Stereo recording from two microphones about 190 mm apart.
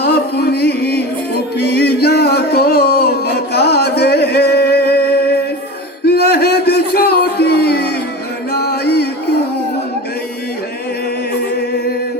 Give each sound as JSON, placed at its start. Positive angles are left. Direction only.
{"t": 0.0, "sound": "music", "side_deg": 55}
{"t": 6.1, "sound": "a sound", "side_deg": 55}
{"t": 8.5, "sound": "music", "side_deg": 55}